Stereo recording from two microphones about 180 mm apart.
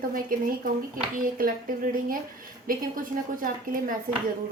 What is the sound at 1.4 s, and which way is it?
Speech, 50° right (ahead or behind).